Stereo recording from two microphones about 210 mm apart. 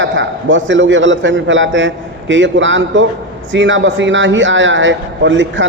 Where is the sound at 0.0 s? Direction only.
60° right (ahead or behind).